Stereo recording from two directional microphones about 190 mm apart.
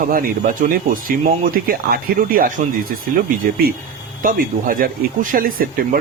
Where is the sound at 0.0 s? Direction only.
45° right (ahead or behind).